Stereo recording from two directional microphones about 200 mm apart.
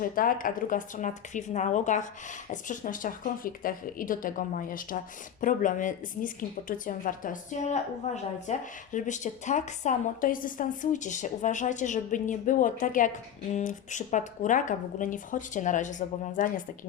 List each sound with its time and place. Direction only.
0.0 s a woman's voice: 45° left (ahead or behind)